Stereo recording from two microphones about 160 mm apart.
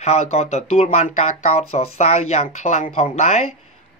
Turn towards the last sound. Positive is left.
turn(degrees=45)  # may be behind; listen again after turning